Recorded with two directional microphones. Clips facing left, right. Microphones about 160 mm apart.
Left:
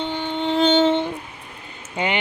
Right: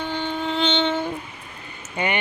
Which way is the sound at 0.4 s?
40° left (ahead or behind).